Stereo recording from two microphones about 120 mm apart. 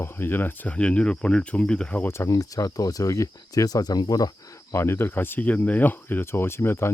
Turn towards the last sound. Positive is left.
turn(degrees=20)  # may be behind; listen again after turning